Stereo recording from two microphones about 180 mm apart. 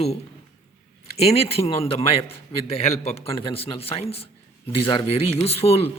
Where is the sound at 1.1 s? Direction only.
35° left (ahead or behind).